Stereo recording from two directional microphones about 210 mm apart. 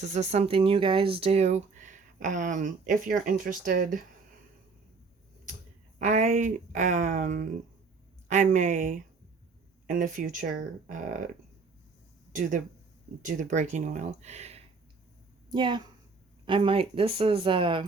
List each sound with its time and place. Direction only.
0.0 s speech: 35° right (ahead or behind)
6.0 s speech: 35° right (ahead or behind)
12.3 s a woman's voice: 40° right (ahead or behind); by 17.8 s 25° right (ahead or behind)